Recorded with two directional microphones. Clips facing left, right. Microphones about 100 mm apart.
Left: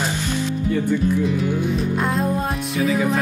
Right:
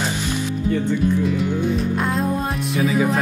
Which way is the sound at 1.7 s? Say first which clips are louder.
Even; centre (ahead or behind).